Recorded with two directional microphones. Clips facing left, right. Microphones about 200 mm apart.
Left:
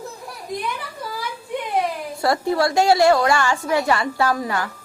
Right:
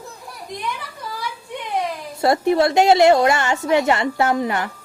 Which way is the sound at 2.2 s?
20° right (ahead or behind).